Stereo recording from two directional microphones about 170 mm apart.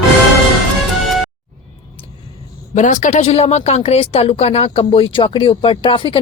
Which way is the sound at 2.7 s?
45° left (ahead or behind).